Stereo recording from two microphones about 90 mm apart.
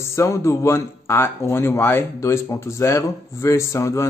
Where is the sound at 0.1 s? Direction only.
35° left (ahead or behind).